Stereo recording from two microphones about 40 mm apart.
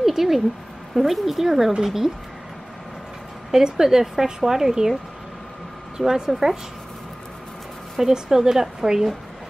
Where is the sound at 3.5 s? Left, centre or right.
Centre.